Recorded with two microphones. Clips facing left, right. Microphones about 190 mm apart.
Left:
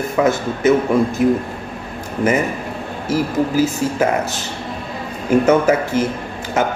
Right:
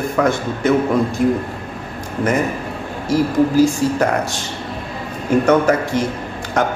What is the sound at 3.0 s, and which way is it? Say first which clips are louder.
A man's voice: right 3 dB; 5° left (ahead or behind).